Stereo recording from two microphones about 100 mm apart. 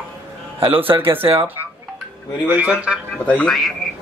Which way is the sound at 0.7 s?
20° right (ahead or behind).